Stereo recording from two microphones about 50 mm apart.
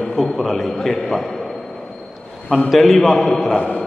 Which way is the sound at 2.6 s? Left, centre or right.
Centre.